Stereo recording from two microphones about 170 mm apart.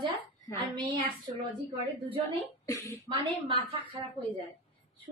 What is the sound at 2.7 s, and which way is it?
Speech, 20° left (ahead or behind).